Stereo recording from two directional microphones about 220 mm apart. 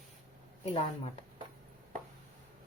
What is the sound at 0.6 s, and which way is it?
Speech, 25° left (ahead or behind).